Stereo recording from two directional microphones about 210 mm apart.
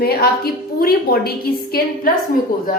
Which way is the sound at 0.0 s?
45° left (ahead or behind).